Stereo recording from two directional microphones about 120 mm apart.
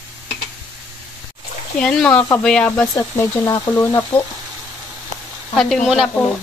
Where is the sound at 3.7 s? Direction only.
20° left (ahead or behind).